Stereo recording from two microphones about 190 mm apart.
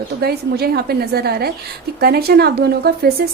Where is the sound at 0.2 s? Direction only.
55° right (ahead or behind).